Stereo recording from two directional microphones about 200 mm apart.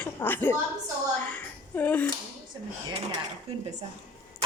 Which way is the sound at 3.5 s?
30° right (ahead or behind).